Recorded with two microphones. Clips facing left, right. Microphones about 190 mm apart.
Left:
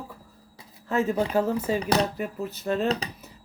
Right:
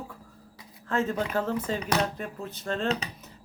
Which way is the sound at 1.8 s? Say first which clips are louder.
Left 4 dB; 35° left (ahead or behind).